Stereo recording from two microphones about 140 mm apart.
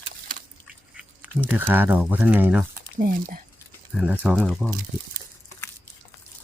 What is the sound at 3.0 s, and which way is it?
Speech, 70° right (ahead or behind).